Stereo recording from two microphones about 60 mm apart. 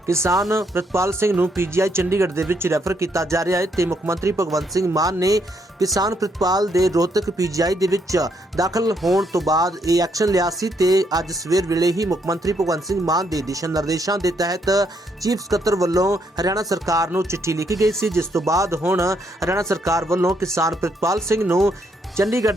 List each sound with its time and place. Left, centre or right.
0.1 s speech: right
4.4 s speech: right
9.0 s speech: centre
9.5 s speech: right
17.2 s speech: right
18.1 s speech: right
22.2 s speech: right